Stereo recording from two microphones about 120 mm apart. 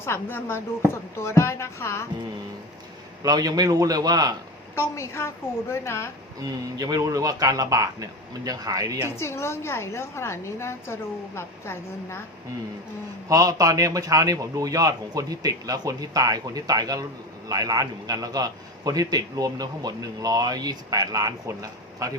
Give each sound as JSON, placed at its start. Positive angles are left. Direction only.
{"t": 0.0, "sound": "a woman's voice", "side_deg": 20}
{"t": 3.2, "sound": "a man's voice", "side_deg": -35}
{"t": 4.7, "sound": "a woman's voice", "side_deg": 25}
{"t": 6.4, "sound": "a man's voice", "side_deg": -30}
{"t": 9.1, "sound": "a woman's voice", "side_deg": 20}
{"t": 13.2, "sound": "a man's voice", "side_deg": -30}